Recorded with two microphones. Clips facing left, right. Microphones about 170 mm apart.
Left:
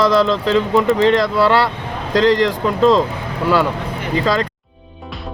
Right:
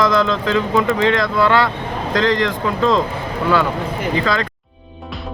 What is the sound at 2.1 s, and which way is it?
Speech, 35° left (ahead or behind).